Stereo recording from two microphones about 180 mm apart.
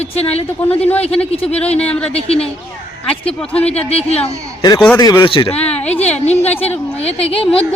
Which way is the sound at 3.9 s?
35° left (ahead or behind).